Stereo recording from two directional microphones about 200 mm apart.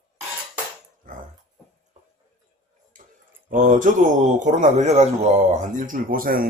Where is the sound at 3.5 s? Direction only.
40° right (ahead or behind).